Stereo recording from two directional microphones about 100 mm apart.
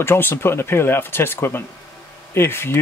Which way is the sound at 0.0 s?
25° left (ahead or behind).